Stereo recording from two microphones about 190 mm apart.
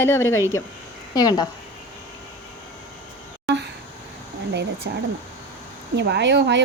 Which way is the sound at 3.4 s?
65° right (ahead or behind).